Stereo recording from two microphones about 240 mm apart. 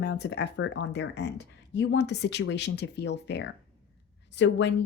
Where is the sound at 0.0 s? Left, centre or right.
Left.